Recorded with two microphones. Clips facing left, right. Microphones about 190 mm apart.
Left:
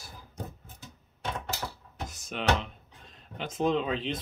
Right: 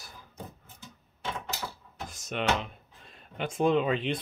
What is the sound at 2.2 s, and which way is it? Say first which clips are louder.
Speech: even; centre (ahead or behind).